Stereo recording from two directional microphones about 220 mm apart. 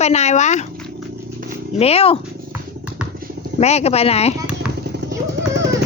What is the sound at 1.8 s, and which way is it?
Speech, 25° left (ahead or behind).